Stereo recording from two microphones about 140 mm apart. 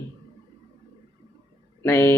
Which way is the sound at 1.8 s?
20° left (ahead or behind).